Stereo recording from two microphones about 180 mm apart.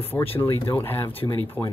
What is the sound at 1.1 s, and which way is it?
Speech, 30° left (ahead or behind).